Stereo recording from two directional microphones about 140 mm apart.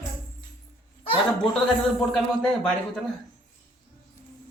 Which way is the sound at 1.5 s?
Centre (ahead or behind).